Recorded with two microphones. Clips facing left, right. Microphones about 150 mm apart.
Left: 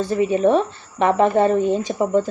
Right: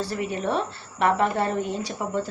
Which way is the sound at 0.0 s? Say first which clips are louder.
Left 10 dB; 20° left (ahead or behind).